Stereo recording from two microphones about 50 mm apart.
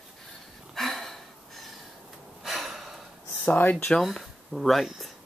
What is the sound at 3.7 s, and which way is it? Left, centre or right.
Speech, centre.